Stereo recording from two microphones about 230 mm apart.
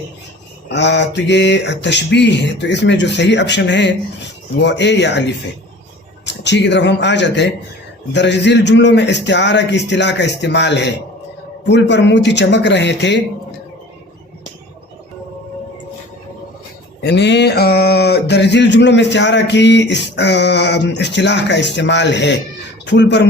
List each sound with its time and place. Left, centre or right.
0.7 s speech: left
17.0 s speech: left